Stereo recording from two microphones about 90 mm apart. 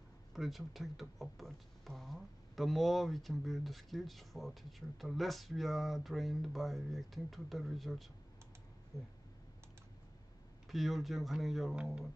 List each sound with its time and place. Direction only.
0.3 s speech: centre (ahead or behind)
8.9 s speech: 35° left (ahead or behind)
10.7 s speech: centre (ahead or behind)